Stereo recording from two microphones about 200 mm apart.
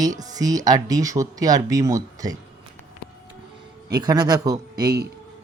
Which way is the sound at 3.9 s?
20° right (ahead or behind).